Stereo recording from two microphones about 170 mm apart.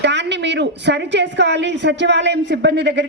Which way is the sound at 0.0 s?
90° right.